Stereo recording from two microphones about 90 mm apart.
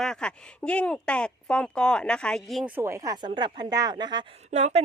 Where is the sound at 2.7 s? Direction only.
30° right (ahead or behind).